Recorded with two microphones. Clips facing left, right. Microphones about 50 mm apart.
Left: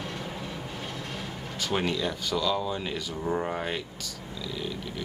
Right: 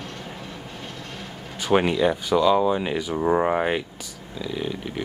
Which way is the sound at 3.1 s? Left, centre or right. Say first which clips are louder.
Right 9 dB; right.